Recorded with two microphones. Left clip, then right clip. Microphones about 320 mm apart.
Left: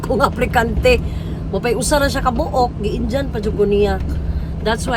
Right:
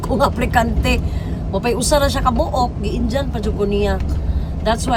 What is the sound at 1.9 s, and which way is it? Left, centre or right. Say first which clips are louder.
Speech: right 1 dB; right.